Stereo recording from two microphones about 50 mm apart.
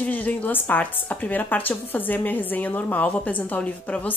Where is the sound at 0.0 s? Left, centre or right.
Left.